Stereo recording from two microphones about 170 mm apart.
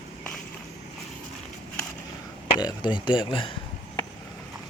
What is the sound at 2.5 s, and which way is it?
Speech, 25° left (ahead or behind).